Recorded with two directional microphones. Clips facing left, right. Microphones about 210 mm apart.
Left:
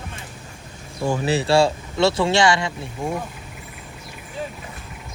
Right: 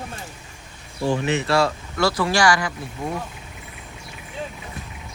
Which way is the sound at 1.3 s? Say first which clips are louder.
Left 6 dB; 30° left (ahead or behind).